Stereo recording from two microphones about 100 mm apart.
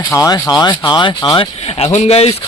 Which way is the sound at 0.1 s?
30° left (ahead or behind).